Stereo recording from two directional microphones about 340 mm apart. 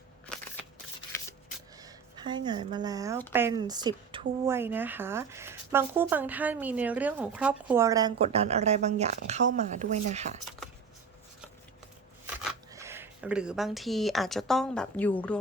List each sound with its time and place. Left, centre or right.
1.8 s speech: centre
12.2 s speech: centre